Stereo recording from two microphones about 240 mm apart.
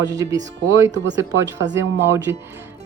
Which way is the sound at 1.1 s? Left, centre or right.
Centre.